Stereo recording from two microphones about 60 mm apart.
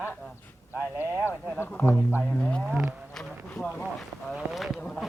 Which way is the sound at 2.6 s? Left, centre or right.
Centre.